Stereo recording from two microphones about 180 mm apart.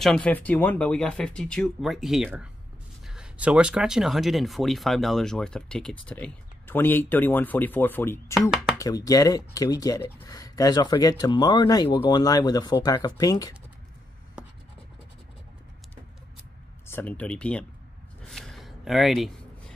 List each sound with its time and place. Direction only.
0.0 s speech: 5° left (ahead or behind)
8.4 s speech: 5° right (ahead or behind)
8.7 s speech: 20° left (ahead or behind)
16.8 s speech: 10° left (ahead or behind)
18.3 s a sound: centre (ahead or behind)